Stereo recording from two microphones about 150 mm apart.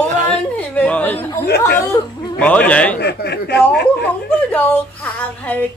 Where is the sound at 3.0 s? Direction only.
90° left.